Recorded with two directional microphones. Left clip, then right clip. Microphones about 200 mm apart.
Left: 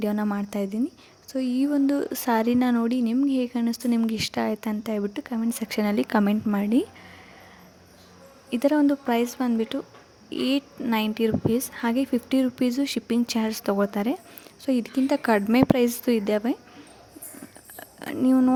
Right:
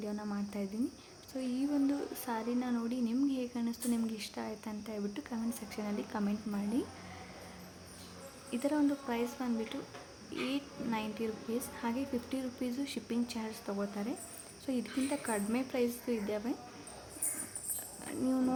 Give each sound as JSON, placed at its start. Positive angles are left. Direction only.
{"t": 0.0, "sound": "speech", "side_deg": 55}
{"t": 8.4, "sound": "speech", "side_deg": 45}
{"t": 18.0, "sound": "speech", "side_deg": 45}